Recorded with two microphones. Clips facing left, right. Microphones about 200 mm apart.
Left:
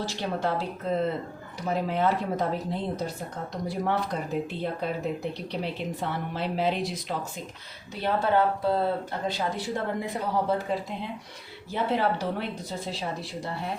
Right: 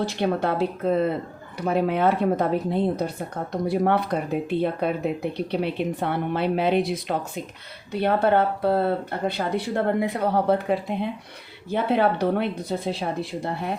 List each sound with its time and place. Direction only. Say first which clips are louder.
0.0 s speech: right 6 dB; 60° right (ahead or behind)